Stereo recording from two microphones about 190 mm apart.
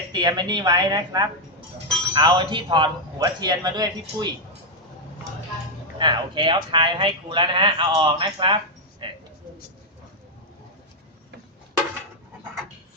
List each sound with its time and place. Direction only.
0.1 s speech: 20° right (ahead or behind)
6.0 s speech: 25° right (ahead or behind)
9.0 s a sound: 25° right (ahead or behind)